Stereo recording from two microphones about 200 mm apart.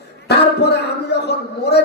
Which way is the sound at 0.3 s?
55° left (ahead or behind).